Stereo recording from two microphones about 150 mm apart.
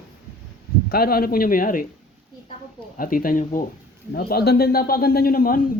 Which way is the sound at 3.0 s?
70° left (ahead or behind).